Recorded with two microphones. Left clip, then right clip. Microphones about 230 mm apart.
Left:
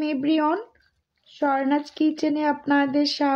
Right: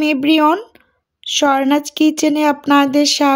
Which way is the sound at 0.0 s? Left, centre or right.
Right.